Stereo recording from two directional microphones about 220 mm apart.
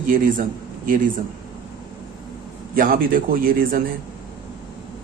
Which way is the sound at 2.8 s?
40° right (ahead or behind).